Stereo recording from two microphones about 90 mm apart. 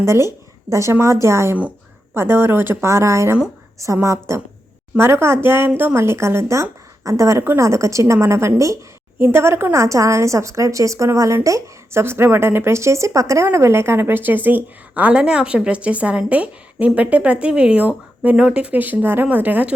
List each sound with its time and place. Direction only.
0.0 s a woman's voice: 30° right (ahead or behind)